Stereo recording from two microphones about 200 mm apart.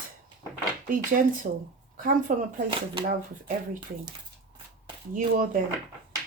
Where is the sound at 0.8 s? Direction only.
45° right (ahead or behind).